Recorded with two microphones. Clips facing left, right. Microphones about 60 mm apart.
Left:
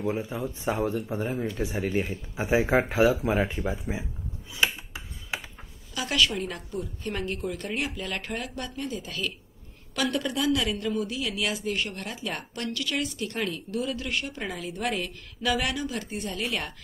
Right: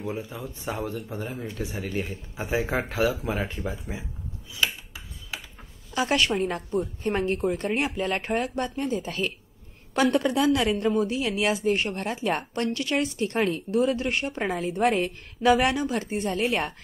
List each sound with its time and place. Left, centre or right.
0.0 s speech: centre
4.6 s a sound: left
5.9 s a woman's voice: right